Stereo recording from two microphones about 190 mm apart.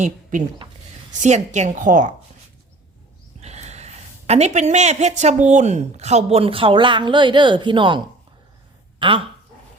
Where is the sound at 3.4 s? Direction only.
35° right (ahead or behind).